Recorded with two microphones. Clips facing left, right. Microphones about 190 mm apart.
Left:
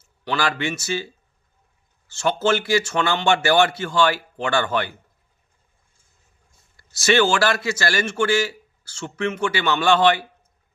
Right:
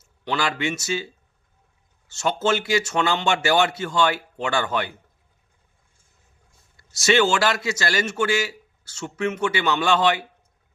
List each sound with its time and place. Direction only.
0.3 s speech: 20° right (ahead or behind)
2.1 s speech: 20° right (ahead or behind)
6.7 s speech: 20° right (ahead or behind)